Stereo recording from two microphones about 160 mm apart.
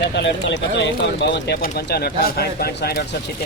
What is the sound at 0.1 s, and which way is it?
Speech, 90° left.